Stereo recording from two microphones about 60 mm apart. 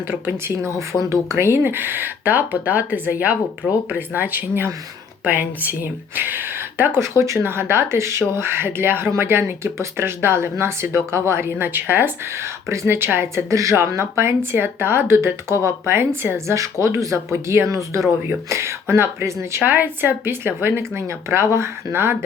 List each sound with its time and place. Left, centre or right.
0.1 s speech: right
0.9 s speech: centre
1.4 s speech: right
11.5 s speech: right
12.6 s speech: right
16.5 s speech: right
19.6 s speech: right